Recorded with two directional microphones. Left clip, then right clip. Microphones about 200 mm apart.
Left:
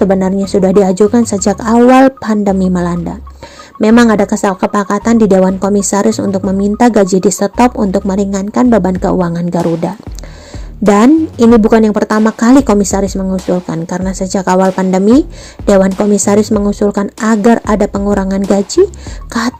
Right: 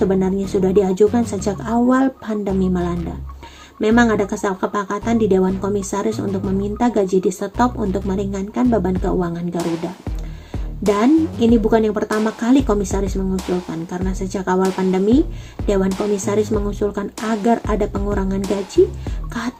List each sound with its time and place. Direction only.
0.1 s speech: 35° left (ahead or behind)
9.6 s speech: centre (ahead or behind)
10.9 s speech: 45° left (ahead or behind)
13.3 s speech: centre (ahead or behind)
13.7 s speech: 40° left (ahead or behind)
15.6 s speech: 45° left (ahead or behind)